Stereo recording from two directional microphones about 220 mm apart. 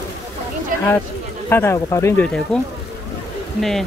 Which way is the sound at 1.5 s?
10° left (ahead or behind).